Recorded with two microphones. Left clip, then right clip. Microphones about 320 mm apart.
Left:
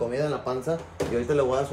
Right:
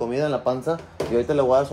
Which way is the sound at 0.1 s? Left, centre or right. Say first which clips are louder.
Right 5 dB; centre.